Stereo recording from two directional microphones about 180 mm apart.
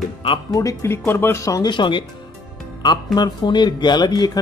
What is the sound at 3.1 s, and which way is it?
Speech, 25° left (ahead or behind).